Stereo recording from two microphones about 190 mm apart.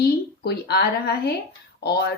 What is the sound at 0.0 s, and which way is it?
A woman's voice, 55° left (ahead or behind).